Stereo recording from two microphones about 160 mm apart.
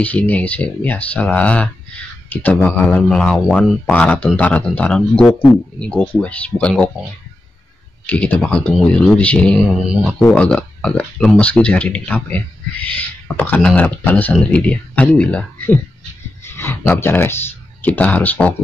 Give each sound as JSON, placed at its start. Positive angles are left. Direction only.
{"t": 0.0, "sound": "speech", "side_deg": 10}
{"t": 8.1, "sound": "speech", "side_deg": 10}